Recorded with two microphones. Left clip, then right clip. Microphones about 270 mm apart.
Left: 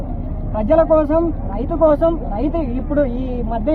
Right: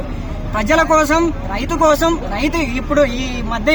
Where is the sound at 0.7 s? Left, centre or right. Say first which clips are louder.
Right 1 dB; right.